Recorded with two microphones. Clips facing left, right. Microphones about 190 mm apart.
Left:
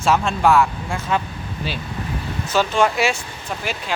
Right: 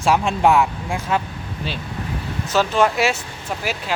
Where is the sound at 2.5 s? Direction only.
Centre (ahead or behind).